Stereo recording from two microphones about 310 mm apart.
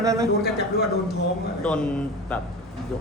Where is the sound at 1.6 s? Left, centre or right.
Centre.